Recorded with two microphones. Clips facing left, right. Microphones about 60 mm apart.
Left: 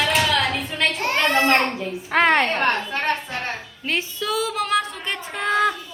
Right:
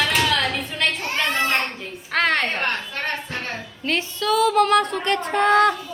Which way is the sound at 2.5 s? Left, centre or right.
Left.